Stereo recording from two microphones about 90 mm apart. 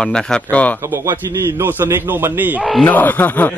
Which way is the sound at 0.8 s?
30° right (ahead or behind).